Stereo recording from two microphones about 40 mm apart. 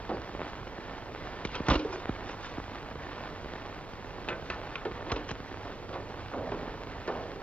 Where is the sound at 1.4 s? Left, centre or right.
Left.